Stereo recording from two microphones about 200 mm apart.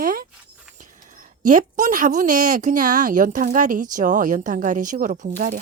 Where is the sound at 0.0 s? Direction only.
45° right (ahead or behind).